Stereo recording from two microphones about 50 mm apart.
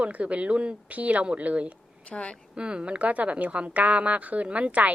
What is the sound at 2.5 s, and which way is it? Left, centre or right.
A woman's voice, right.